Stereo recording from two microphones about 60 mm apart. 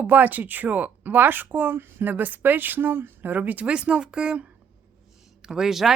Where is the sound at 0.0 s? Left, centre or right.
Right.